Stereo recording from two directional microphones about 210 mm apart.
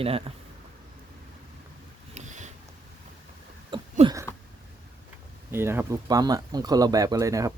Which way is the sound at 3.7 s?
25° right (ahead or behind).